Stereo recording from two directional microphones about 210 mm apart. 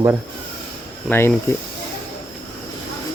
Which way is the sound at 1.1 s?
10° left (ahead or behind).